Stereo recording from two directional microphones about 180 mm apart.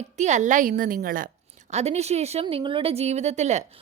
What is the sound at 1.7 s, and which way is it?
Speech, 35° right (ahead or behind).